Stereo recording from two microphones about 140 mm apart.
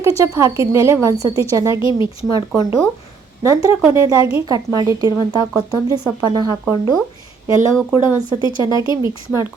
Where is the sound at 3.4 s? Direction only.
20° right (ahead or behind).